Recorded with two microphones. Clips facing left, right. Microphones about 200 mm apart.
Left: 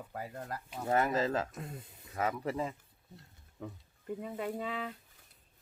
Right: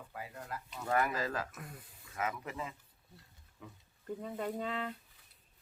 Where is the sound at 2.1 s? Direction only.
35° left (ahead or behind).